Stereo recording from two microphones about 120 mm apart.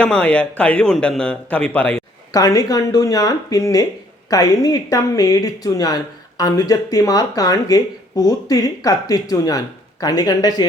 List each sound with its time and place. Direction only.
0.0 s a man's voice: 10° left (ahead or behind)
2.3 s a woman's voice: 30° left (ahead or behind)